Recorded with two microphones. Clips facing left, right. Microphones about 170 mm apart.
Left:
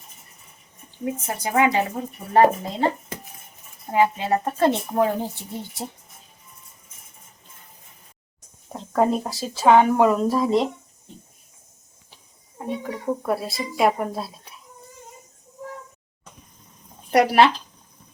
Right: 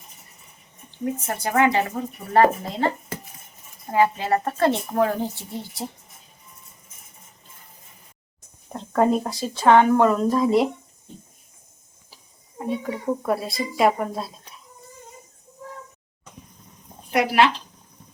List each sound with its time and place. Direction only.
0.9 s speech: 10° left (ahead or behind)
3.9 s a woman's voice: 20° left (ahead or behind)
8.7 s speech: centre (ahead or behind)
12.1 s speech: centre (ahead or behind)
17.1 s speech: 40° left (ahead or behind)